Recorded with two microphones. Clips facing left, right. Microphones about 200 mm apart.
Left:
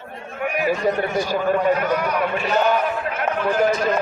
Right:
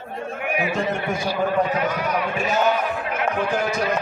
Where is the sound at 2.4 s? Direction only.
45° right (ahead or behind).